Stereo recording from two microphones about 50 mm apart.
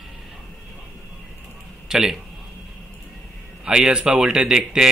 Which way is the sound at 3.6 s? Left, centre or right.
Centre.